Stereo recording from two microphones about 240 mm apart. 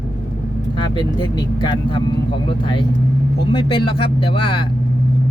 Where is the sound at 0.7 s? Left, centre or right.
Centre.